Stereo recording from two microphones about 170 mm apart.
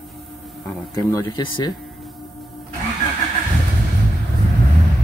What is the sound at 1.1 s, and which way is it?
Speech, 25° left (ahead or behind).